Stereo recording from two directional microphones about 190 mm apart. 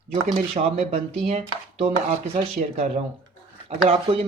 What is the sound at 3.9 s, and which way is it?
Speech, 30° right (ahead or behind).